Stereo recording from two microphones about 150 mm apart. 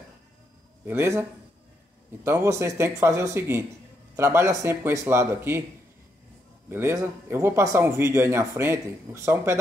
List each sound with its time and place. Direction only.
0.8 s speech: 20° right (ahead or behind)
2.2 s speech: 20° right (ahead or behind)
6.7 s speech: 15° right (ahead or behind)